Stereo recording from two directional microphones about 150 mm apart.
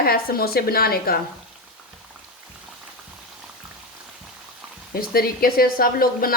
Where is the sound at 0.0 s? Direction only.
85° left.